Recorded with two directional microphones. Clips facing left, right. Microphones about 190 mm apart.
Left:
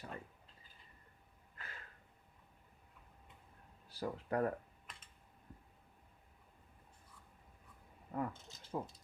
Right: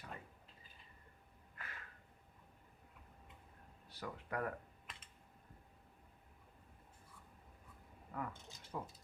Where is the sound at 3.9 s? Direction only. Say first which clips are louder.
Left 6 dB; 30° left (ahead or behind).